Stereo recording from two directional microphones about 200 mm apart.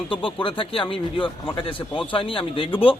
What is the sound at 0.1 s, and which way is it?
A man's voice, 25° left (ahead or behind).